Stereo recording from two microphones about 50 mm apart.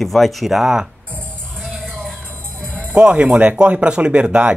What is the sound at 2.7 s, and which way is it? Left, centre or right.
Music, right.